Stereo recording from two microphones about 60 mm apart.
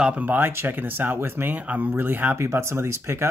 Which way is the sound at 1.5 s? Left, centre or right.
Right.